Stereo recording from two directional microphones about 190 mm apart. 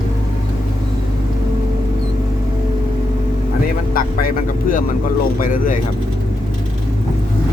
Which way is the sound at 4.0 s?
45° left (ahead or behind).